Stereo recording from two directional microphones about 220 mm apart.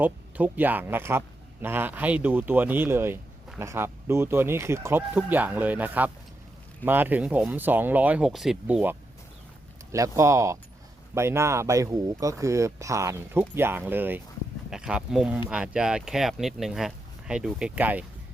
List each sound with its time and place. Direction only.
0.0 s speech: 10° right (ahead or behind)